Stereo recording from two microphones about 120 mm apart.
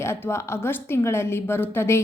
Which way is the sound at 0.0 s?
20° left (ahead or behind).